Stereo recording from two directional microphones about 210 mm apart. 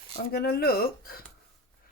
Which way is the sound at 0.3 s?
45° left (ahead or behind).